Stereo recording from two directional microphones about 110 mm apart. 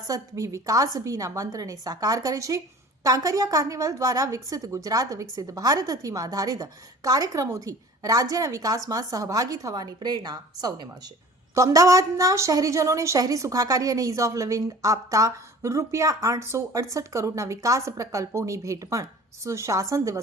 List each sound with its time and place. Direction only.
0.1 s a woman's voice: 30° right (ahead or behind)